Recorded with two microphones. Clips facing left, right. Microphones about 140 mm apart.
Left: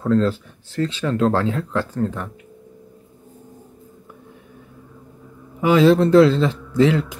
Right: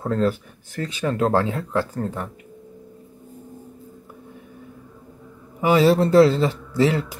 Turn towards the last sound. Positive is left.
turn(degrees=-10)  # may be behind; listen again after turning